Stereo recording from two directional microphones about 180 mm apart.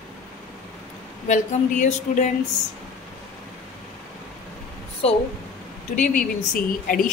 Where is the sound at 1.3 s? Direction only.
45° left (ahead or behind).